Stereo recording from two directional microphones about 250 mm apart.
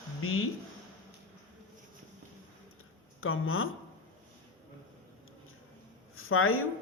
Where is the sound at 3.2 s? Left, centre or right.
Left.